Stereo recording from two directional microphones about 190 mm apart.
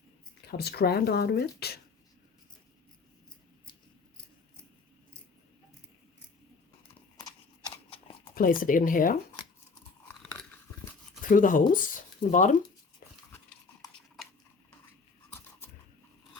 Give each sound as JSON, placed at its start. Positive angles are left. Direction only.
{"t": 0.4, "sound": "speech", "side_deg": 55}
{"t": 7.9, "sound": "a sound", "side_deg": 30}
{"t": 8.4, "sound": "speech", "side_deg": 45}
{"t": 11.2, "sound": "speech", "side_deg": 45}